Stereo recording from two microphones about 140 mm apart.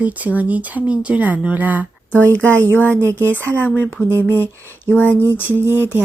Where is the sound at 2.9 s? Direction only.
20° right (ahead or behind).